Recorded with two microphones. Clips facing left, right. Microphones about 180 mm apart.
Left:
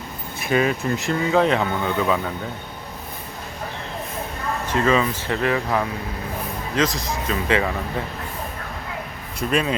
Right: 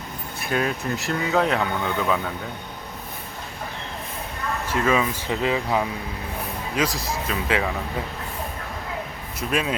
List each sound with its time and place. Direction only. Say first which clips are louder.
0.3 s speech: left 4 dB; centre (ahead or behind)
4.7 s speech: left 2 dB; 10° right (ahead or behind)
9.5 s speech: left 3 dB; centre (ahead or behind)